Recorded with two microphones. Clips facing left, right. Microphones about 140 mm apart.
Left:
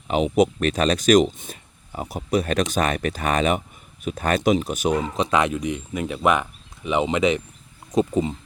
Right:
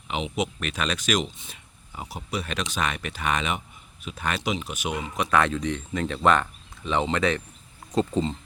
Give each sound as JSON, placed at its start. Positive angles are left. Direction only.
{"t": 0.1, "sound": "speech", "side_deg": 45}